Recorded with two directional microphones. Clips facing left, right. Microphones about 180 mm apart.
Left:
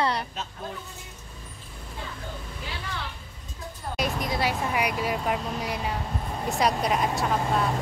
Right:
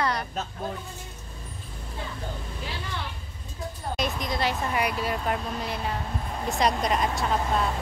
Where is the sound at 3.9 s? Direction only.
10° left (ahead or behind).